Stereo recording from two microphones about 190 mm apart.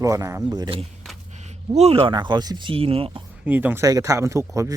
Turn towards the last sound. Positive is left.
turn(degrees=-15)  # may be behind; listen again after turning